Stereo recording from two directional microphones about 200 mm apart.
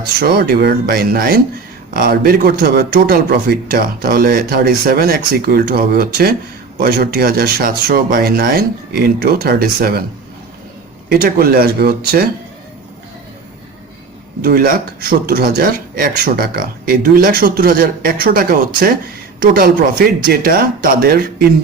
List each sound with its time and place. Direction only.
0.2 s speech: 50° right (ahead or behind)
11.1 s speech: 50° right (ahead or behind)
14.4 s speech: 50° right (ahead or behind)